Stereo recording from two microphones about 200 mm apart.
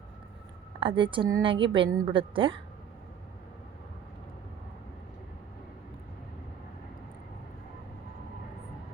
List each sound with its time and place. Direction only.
0.8 s a woman's voice: 25° right (ahead or behind)